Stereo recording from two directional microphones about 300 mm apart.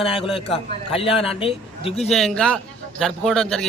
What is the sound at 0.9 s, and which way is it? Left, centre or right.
A man's voice, centre.